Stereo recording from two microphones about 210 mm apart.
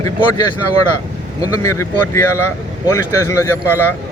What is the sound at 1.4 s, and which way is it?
Speech, 15° left (ahead or behind).